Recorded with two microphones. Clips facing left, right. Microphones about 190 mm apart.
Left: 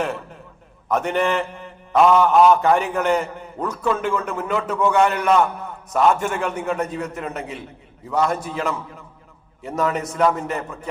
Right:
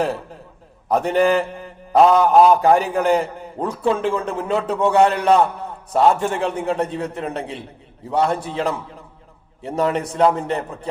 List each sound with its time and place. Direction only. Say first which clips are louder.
0.9 s a man's voice: right 4 dB; 35° right (ahead or behind)